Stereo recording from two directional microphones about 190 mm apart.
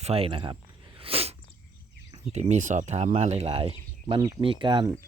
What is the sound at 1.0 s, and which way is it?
Sneeze, 30° right (ahead or behind).